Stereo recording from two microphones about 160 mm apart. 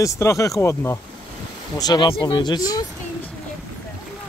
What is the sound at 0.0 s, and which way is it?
Speech, 20° left (ahead or behind).